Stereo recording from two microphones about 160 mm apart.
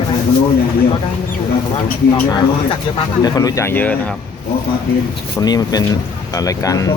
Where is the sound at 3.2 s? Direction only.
20° left (ahead or behind).